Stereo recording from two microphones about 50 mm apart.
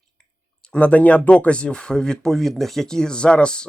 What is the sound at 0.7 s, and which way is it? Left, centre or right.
Speech, left.